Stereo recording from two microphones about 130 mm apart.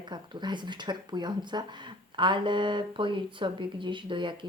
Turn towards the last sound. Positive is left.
turn(degrees=-40)  # may be behind; listen again after turning